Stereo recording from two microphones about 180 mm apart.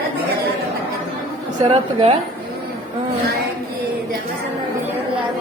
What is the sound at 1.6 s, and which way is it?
Speech, 30° right (ahead or behind).